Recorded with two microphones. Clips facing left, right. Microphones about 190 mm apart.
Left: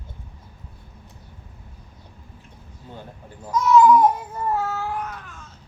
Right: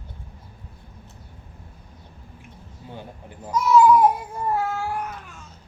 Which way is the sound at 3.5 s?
10° right (ahead or behind).